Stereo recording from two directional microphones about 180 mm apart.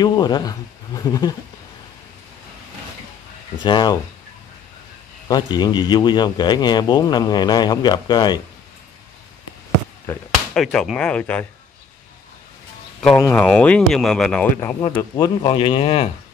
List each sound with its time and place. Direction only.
0.0 s speech: 25° left (ahead or behind)
3.6 s a man's voice: 25° left (ahead or behind)
5.3 s a man's voice: 25° left (ahead or behind)
10.5 s speech: 5° left (ahead or behind)
13.2 s speech: 10° left (ahead or behind)
14.8 s a man's voice: 20° left (ahead or behind)